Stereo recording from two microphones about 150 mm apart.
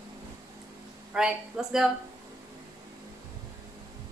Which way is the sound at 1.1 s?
5° right (ahead or behind).